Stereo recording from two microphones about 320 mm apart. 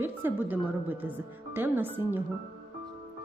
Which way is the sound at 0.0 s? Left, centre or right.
Centre.